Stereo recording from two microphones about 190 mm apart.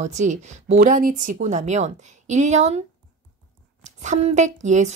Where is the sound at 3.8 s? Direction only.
40° right (ahead or behind).